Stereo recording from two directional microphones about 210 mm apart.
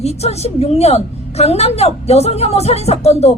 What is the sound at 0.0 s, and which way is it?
A woman's voice, 30° left (ahead or behind).